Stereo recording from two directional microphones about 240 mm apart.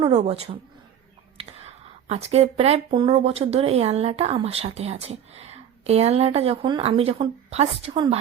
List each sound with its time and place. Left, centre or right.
0.0 s speech: right
1.6 s speech: right